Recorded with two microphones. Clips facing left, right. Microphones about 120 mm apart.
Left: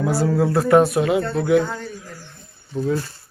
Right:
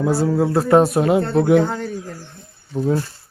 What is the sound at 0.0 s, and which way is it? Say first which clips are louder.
Speech: right 2 dB; 20° right (ahead or behind).